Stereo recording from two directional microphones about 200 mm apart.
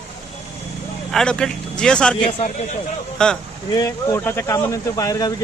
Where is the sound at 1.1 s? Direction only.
5° left (ahead or behind).